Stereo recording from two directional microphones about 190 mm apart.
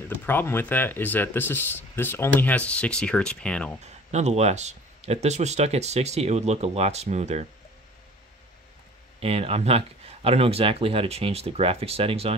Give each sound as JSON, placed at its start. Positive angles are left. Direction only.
{"t": 0.1, "sound": "speech", "side_deg": 10}
{"t": 3.8, "sound": "speech", "side_deg": -35}
{"t": 9.2, "sound": "speech", "side_deg": -30}